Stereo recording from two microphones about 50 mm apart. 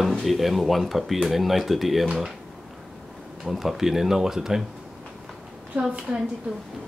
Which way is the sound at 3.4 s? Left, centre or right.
Centre.